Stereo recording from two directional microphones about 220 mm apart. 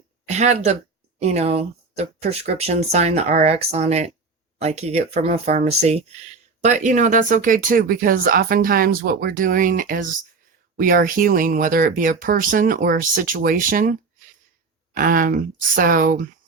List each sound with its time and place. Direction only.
0.3 s speech: 30° right (ahead or behind)
14.9 s speech: 40° right (ahead or behind)